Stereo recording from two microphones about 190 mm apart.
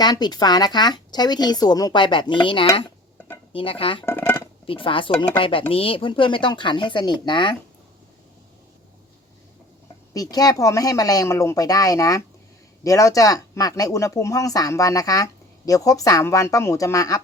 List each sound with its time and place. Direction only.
0.0 s speech: 20° left (ahead or behind)
4.0 s speech: 10° left (ahead or behind)
4.6 s speech: 30° left (ahead or behind)
10.2 s speech: 20° left (ahead or behind)